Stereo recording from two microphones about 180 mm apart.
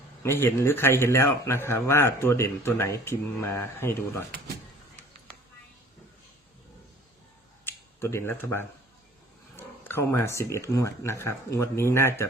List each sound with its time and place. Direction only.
0.2 s speech: 15° left (ahead or behind)
7.6 s a sound: 15° left (ahead or behind)
9.6 s speech: 15° left (ahead or behind)